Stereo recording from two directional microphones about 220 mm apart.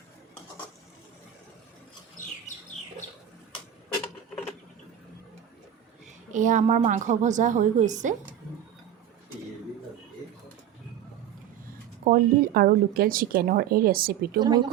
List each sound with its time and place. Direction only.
6.3 s a woman's voice: 35° right (ahead or behind)
12.0 s a woman's voice: 40° right (ahead or behind)